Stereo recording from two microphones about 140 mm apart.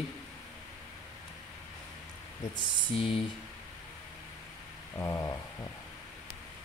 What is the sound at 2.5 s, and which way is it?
Speech, 40° left (ahead or behind).